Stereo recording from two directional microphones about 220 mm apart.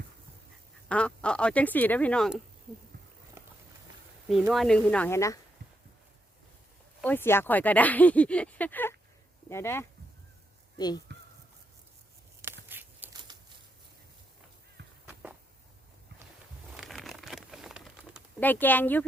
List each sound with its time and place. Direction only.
0.9 s speech: 5° left (ahead or behind)
4.3 s speech: centre (ahead or behind)
7.0 s speech: 10° left (ahead or behind)
12.6 s a sound: 10° right (ahead or behind)
13.3 s a sound: 20° right (ahead or behind)
16.7 s crumpling: centre (ahead or behind)
18.3 s speech: 10° left (ahead or behind)